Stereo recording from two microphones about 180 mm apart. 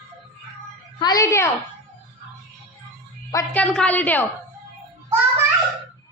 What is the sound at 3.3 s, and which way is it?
Speech, 15° left (ahead or behind).